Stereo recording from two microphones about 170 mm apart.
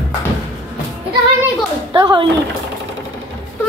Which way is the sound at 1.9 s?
25° right (ahead or behind).